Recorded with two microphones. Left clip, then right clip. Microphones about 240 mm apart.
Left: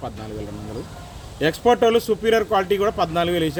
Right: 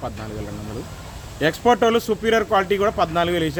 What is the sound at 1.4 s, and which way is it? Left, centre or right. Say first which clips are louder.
Speech: even; centre.